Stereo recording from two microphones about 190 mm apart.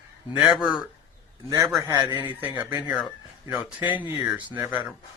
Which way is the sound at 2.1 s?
25° left (ahead or behind).